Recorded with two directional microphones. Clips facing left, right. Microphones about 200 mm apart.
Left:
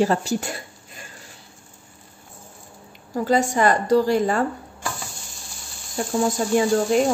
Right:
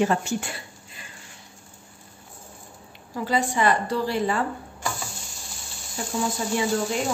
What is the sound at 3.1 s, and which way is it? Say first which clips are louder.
A woman's voice: left 5 dB; 45° left (ahead or behind).